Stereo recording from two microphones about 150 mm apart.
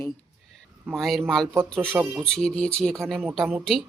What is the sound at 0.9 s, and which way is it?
Speech, centre (ahead or behind).